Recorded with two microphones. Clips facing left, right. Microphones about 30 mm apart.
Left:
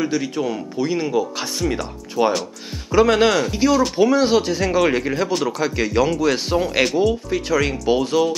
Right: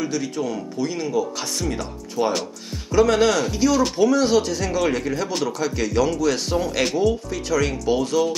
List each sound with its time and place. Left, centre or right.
0.0 s speech: centre